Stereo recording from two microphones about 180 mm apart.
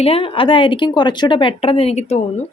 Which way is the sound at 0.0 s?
35° left (ahead or behind).